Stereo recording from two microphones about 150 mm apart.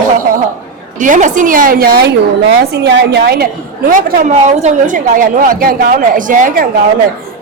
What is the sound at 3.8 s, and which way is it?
A woman's voice, 65° right (ahead or behind).